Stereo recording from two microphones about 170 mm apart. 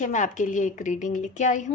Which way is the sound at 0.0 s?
45° left (ahead or behind).